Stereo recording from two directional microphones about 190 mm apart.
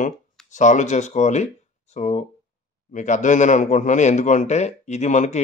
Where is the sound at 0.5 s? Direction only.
40° left (ahead or behind).